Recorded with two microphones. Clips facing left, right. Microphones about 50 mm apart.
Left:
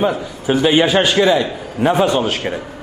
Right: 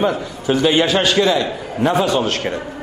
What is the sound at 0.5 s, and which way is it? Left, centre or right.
A man's voice, centre.